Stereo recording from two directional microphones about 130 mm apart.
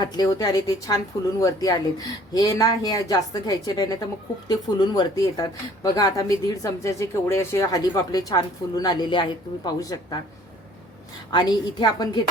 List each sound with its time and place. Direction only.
0.0 s a woman's voice: 30° left (ahead or behind)
11.3 s a woman's voice: 30° left (ahead or behind)